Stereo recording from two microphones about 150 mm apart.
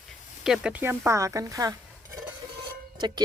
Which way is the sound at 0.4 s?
5° right (ahead or behind).